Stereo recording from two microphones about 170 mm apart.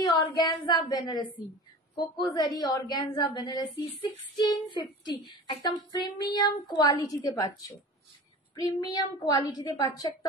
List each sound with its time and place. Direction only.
0.0 s speech: 25° left (ahead or behind)